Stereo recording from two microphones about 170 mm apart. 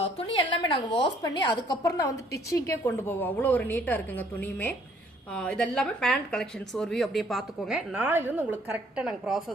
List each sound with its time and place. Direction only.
0.0 s a woman's voice: 30° left (ahead or behind); by 9.4 s 5° right (ahead or behind)